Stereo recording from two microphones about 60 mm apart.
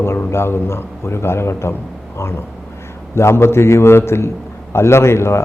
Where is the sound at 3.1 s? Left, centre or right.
Left.